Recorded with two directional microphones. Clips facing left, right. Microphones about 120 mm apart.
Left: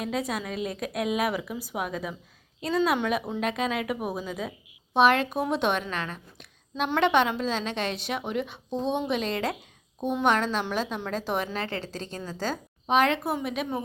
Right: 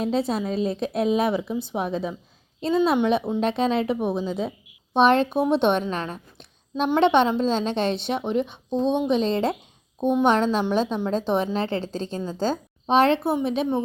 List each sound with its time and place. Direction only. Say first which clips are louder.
0.0 s a woman's voice: right 6 dB; 30° right (ahead or behind)